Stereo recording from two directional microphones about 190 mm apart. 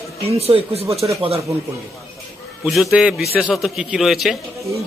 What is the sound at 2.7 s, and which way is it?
A man's voice, centre (ahead or behind).